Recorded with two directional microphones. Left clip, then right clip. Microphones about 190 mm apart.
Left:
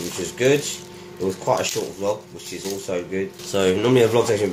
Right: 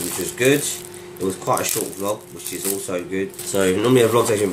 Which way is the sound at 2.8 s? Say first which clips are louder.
Left 2 dB; 5° left (ahead or behind).